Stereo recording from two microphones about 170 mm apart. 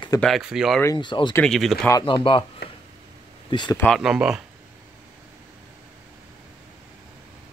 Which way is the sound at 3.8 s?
Centre (ahead or behind).